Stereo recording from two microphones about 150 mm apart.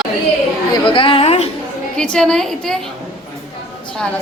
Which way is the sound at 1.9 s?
5° left (ahead or behind).